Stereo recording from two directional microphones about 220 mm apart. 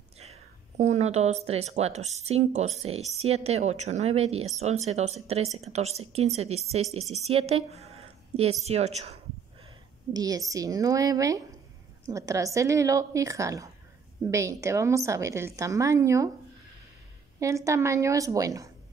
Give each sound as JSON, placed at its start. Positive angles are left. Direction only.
{"t": 0.2, "sound": "speech", "side_deg": -30}
{"t": 10.1, "sound": "a woman's voice", "side_deg": -15}
{"t": 17.4, "sound": "a woman's voice", "side_deg": -15}